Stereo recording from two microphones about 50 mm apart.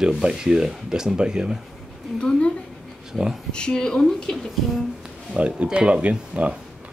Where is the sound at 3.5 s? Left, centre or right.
Centre.